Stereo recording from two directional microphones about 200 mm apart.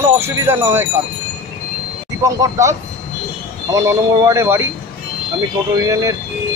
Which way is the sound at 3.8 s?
15° right (ahead or behind).